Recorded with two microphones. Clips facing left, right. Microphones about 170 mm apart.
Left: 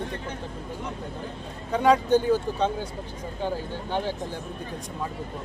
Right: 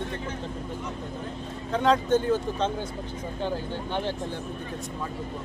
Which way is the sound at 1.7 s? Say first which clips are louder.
Left 2 dB; 10° left (ahead or behind).